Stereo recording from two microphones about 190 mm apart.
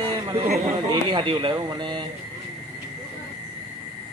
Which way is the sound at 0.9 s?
25° right (ahead or behind).